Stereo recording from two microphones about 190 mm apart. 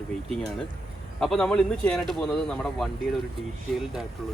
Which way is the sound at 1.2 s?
Centre (ahead or behind).